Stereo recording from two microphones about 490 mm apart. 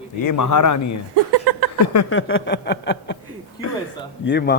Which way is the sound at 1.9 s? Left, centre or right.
Left.